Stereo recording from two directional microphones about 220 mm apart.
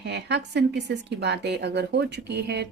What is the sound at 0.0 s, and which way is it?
A woman's voice, 50° right (ahead or behind).